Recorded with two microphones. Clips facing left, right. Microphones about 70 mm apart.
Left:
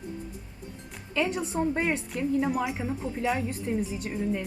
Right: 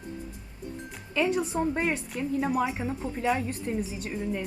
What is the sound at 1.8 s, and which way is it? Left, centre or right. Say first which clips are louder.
Speech: left 1 dB; centre.